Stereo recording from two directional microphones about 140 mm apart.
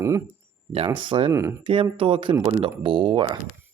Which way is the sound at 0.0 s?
20° right (ahead or behind).